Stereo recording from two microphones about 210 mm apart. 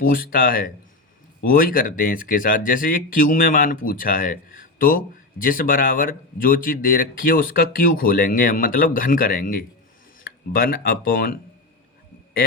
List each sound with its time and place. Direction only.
0.0 s speech: 40° left (ahead or behind)